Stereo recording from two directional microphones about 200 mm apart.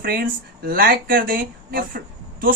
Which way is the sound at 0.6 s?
50° right (ahead or behind).